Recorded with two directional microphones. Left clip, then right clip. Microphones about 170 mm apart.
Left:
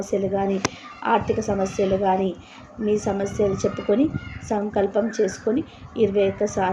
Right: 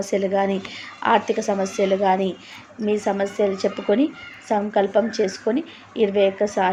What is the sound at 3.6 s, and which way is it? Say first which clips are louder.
Speech: right 1 dB; 15° right (ahead or behind).